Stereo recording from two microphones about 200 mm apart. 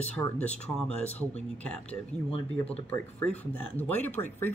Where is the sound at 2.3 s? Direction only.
30° left (ahead or behind).